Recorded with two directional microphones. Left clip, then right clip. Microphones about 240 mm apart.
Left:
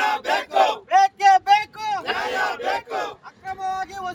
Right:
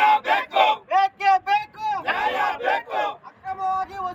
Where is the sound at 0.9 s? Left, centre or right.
Centre.